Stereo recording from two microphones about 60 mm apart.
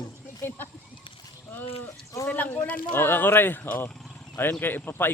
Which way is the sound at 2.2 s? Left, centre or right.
Left.